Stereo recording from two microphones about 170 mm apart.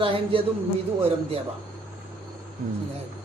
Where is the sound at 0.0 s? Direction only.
30° right (ahead or behind).